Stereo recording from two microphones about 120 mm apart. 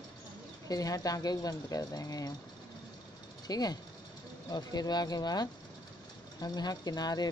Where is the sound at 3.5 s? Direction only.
35° left (ahead or behind).